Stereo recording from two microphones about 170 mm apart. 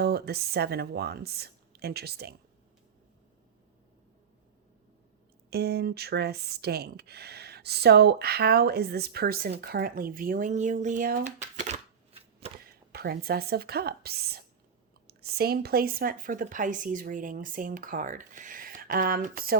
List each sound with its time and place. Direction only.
0.0 s speech: 70° right (ahead or behind)
5.5 s speech: 70° right (ahead or behind); by 11.8 s 45° right (ahead or behind)
12.9 s speech: 70° right (ahead or behind)